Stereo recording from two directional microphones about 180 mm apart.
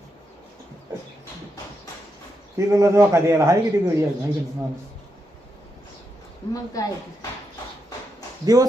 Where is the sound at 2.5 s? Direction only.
15° right (ahead or behind).